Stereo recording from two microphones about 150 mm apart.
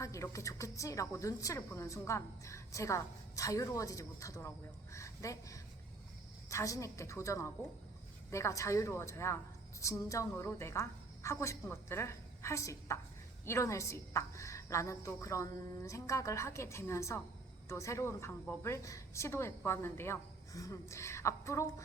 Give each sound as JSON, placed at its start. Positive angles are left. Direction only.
{"t": 0.0, "sound": "a woman's voice", "side_deg": 20}